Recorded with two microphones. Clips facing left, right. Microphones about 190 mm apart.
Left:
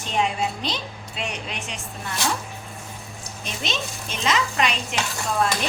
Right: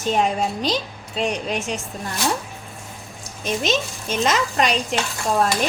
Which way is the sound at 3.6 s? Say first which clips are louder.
Right 4 dB; 45° right (ahead or behind).